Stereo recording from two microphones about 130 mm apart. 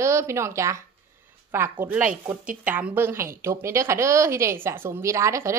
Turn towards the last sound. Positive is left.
turn(degrees=-20)  # may be behind; listen again after turning